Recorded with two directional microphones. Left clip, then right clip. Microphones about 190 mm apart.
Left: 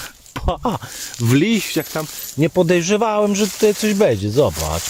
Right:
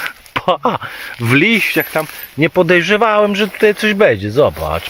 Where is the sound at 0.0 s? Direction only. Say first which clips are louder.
Right 9 dB; 15° left (ahead or behind).